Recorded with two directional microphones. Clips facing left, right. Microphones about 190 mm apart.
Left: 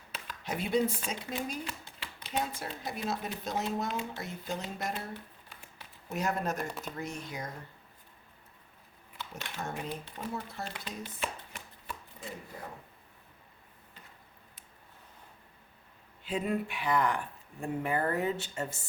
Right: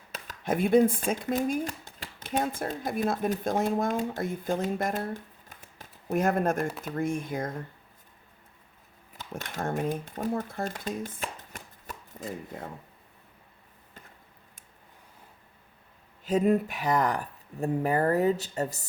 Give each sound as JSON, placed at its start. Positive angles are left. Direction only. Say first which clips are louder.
{"t": 0.3, "sound": "speech", "louder": "right 9 dB", "side_deg": -50}
{"t": 9.1, "sound": "speech", "louder": "right 5 dB", "side_deg": -45}
{"t": 16.2, "sound": "speech", "louder": "right 8 dB", "side_deg": -40}